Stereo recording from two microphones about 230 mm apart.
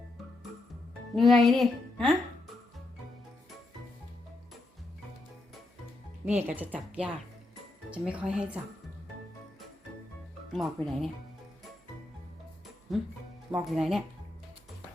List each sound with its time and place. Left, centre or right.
1.1 s speech: centre
6.2 s speech: centre
10.5 s speech: centre
13.5 s speech: centre